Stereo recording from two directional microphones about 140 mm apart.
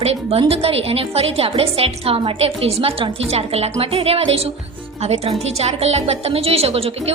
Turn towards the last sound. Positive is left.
turn(degrees=-45)  # may be behind; listen again after turning